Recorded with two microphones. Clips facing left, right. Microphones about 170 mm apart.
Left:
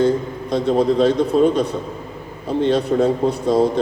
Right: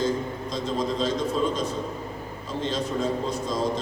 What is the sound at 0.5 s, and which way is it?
A man's voice, 65° left (ahead or behind).